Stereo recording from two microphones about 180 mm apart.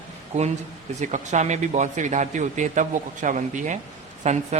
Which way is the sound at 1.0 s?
40° right (ahead or behind).